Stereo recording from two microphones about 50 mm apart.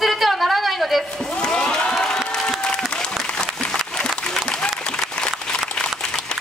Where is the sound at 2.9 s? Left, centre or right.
Centre.